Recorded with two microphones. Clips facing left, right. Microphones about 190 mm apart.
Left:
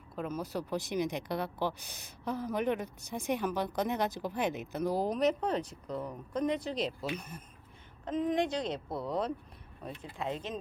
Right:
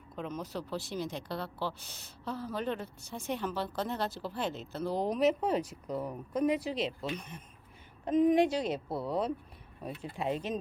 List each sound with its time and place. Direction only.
0.2 s speech: 10° left (ahead or behind)
5.0 s speech: centre (ahead or behind)
8.0 s speech: 15° right (ahead or behind)
10.2 s speech: 15° right (ahead or behind)